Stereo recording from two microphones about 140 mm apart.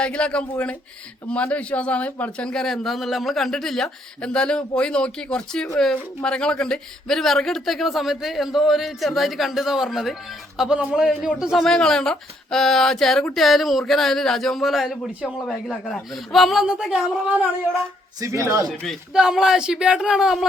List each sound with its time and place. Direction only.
0.0 s a man's voice: 10° left (ahead or behind)
18.2 s speech: 20° right (ahead or behind)
18.7 s a man's voice: centre (ahead or behind)